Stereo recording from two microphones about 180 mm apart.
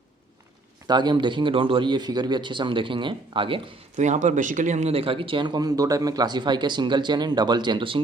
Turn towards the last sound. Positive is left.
turn(degrees=-25)  # may be behind; listen again after turning